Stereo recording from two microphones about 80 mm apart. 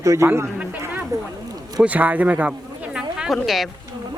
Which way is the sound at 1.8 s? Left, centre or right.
Centre.